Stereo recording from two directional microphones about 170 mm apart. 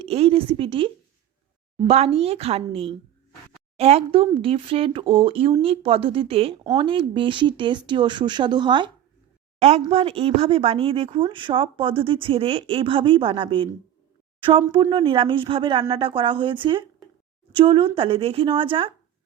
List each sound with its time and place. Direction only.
0.0 s speech: 35° right (ahead or behind)
1.9 s speech: 35° right (ahead or behind)
9.6 s speech: 40° right (ahead or behind)
14.7 s speech: 30° right (ahead or behind)